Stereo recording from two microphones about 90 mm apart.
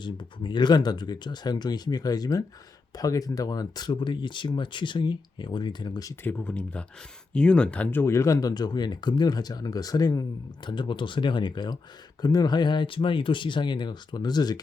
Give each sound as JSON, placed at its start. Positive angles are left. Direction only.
{"t": 0.0, "sound": "speech", "side_deg": 60}
{"t": 6.2, "sound": "speech", "side_deg": 20}
{"t": 7.9, "sound": "speech", "side_deg": 25}